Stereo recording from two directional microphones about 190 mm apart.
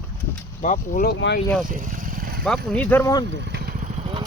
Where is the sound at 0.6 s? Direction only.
40° left (ahead or behind).